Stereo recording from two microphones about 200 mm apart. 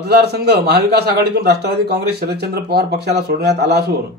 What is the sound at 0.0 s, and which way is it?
A man's voice, 55° right (ahead or behind).